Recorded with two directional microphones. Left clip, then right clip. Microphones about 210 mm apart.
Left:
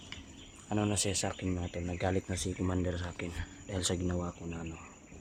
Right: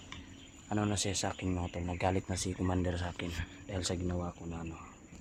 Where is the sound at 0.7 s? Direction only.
Centre (ahead or behind).